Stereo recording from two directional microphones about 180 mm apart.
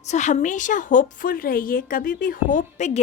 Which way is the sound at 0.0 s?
40° left (ahead or behind).